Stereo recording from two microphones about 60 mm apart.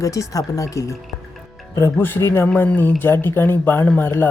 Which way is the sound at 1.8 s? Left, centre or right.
Left.